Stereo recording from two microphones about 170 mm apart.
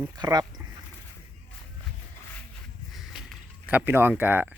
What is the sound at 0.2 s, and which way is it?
Speech, 25° right (ahead or behind).